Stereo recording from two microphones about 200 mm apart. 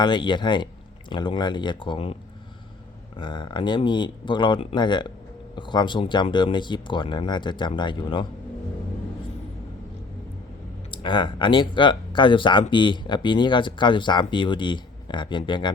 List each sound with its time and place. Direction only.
0.0 s speech: 25° left (ahead or behind)
3.2 s speech: 25° left (ahead or behind)
10.9 s speech: 25° left (ahead or behind)